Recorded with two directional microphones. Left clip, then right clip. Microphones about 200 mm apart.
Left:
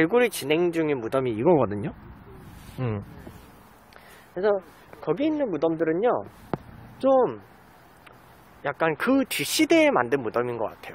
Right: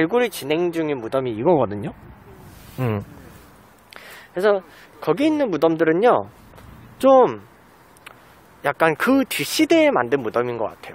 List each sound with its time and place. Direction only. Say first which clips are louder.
0.0 s speech: right 2 dB; 5° right (ahead or behind)
2.8 s speech: right 6 dB; 20° right (ahead or behind)
3.9 s speech: right 7 dB; 40° right (ahead or behind)
8.6 s speech: right 6 dB; 25° right (ahead or behind)